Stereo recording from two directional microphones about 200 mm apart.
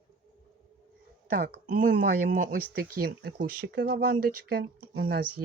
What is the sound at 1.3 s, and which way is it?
Speech, 45° right (ahead or behind).